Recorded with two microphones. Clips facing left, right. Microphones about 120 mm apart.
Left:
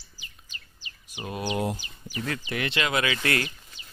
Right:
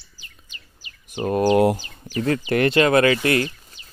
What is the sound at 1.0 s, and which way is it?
Speech, 50° right (ahead or behind).